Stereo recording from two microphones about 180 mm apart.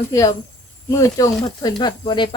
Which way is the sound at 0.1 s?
20° left (ahead or behind).